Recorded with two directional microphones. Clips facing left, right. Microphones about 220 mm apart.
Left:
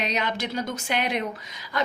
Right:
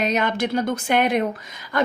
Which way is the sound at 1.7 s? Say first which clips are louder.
Right 6 dB; 55° right (ahead or behind).